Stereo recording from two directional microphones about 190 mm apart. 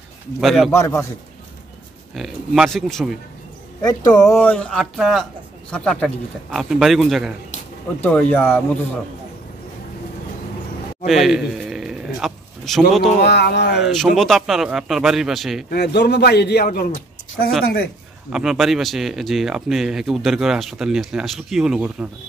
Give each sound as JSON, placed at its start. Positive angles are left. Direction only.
{"t": 0.4, "sound": "speech", "side_deg": 0}
{"t": 0.7, "sound": "speech", "side_deg": 15}
{"t": 2.1, "sound": "speech", "side_deg": 0}
{"t": 3.8, "sound": "speech", "side_deg": 20}
{"t": 4.3, "sound": "speech", "side_deg": 10}
{"t": 11.1, "sound": "a sound", "side_deg": 0}
{"t": 13.2, "sound": "a man's voice", "side_deg": 60}
{"t": 13.7, "sound": "speech", "side_deg": 0}
{"t": 15.7, "sound": "a man's voice", "side_deg": 60}
{"t": 18.3, "sound": "speech", "side_deg": 0}